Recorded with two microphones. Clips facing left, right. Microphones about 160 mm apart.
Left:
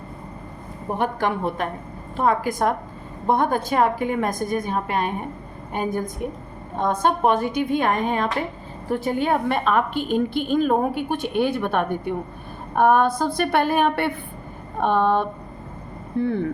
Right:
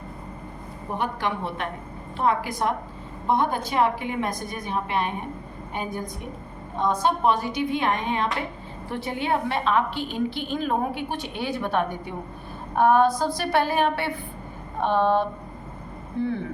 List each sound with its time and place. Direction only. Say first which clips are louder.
0.9 s a woman's voice: left 4 dB; 50° left (ahead or behind)